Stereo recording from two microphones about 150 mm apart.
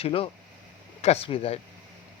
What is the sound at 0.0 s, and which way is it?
Speech, 40° left (ahead or behind).